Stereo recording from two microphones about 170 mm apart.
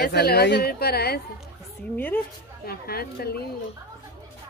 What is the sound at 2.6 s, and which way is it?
Speech, 65° left (ahead or behind).